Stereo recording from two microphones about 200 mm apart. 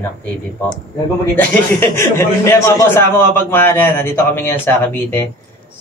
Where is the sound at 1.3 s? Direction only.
10° left (ahead or behind).